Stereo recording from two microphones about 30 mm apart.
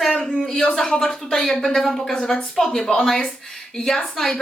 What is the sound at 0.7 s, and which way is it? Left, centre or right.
Speech, centre.